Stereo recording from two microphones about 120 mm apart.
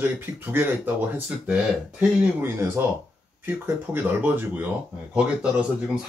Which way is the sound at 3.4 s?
15° right (ahead or behind).